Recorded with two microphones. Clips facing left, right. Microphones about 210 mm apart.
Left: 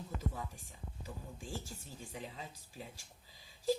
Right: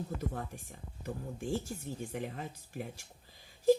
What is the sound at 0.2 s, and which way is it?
Speech, 60° right (ahead or behind).